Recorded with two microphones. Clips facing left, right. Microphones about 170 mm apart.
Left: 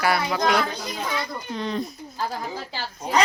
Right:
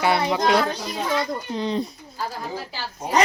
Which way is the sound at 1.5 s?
30° right (ahead or behind).